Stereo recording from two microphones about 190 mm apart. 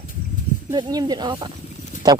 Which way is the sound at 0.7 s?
20° right (ahead or behind).